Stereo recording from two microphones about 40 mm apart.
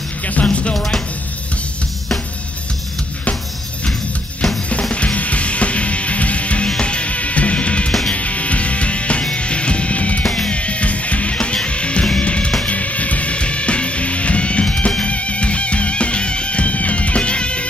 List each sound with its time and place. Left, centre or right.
0.2 s music: left
4.9 s music: left
10.2 s music: left